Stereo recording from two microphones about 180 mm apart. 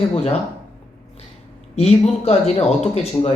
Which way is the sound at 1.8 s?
35° left (ahead or behind).